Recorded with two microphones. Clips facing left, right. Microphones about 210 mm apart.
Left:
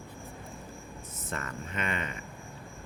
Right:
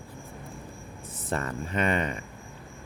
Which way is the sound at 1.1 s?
35° right (ahead or behind).